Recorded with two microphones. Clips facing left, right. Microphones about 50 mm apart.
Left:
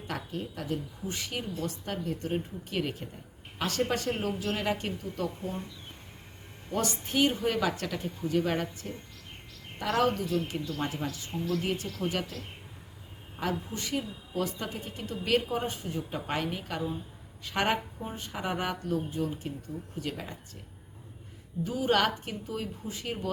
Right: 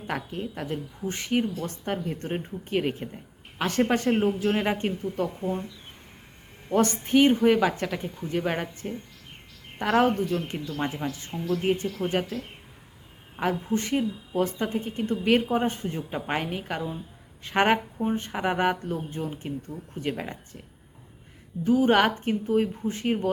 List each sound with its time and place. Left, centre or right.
0.1 s a woman's voice: right
6.7 s a woman's voice: right
13.4 s a woman's voice: right
21.6 s a woman's voice: right